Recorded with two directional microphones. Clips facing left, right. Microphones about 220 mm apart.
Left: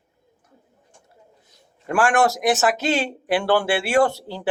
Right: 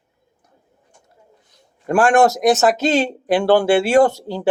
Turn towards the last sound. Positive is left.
turn(degrees=-45)  # may be behind; listen again after turning